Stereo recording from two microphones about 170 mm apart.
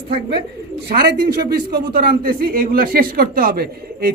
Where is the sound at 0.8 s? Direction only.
25° right (ahead or behind).